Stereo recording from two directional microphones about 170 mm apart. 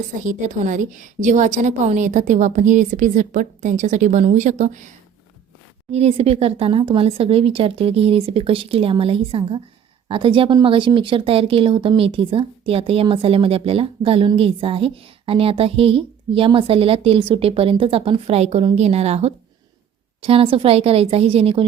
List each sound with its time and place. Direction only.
0.3 s a woman's voice: 45° right (ahead or behind)
5.9 s speech: 35° right (ahead or behind)